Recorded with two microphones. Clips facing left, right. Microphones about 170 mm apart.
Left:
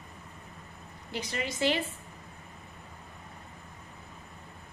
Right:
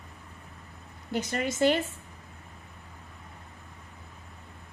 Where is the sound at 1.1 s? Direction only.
50° right (ahead or behind).